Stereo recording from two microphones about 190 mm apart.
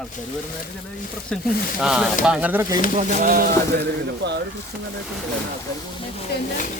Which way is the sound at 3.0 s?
45° right (ahead or behind).